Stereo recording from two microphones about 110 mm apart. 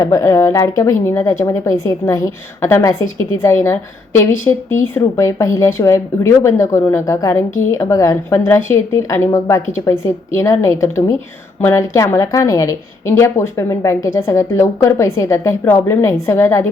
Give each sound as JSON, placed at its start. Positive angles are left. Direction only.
{"t": 0.0, "sound": "a woman's voice", "side_deg": 30}